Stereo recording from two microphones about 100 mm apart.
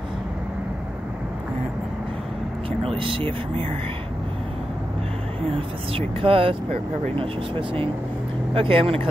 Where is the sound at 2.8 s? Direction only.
65° right (ahead or behind).